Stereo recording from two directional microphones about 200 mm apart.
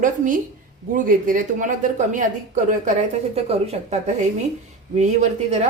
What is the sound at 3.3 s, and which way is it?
Speech, 30° right (ahead or behind).